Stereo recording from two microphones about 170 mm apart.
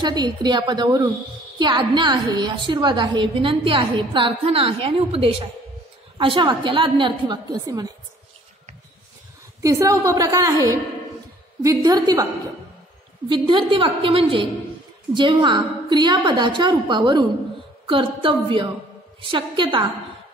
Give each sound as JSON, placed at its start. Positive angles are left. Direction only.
{"t": 0.0, "sound": "a woman's voice", "side_deg": -25}
{"t": 9.6, "sound": "a woman's voice", "side_deg": -20}
{"t": 13.3, "sound": "a woman's voice", "side_deg": -30}